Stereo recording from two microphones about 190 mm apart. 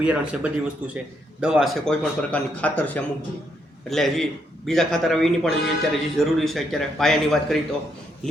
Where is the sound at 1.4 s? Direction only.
5° right (ahead or behind).